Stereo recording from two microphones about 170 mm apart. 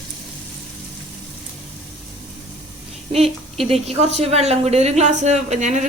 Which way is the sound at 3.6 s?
40° right (ahead or behind).